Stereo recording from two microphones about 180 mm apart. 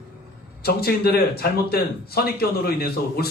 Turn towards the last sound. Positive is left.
turn(degrees=60)  # may be behind; listen again after turning